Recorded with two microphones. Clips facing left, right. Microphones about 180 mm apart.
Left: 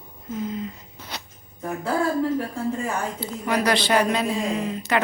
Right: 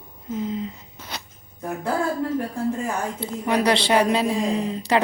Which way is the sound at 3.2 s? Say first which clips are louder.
Right 3 dB; 25° right (ahead or behind).